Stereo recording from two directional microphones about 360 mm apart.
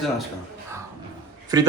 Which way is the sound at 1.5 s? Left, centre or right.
Centre.